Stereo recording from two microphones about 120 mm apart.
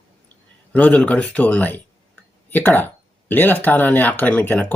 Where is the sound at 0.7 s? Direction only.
10° left (ahead or behind).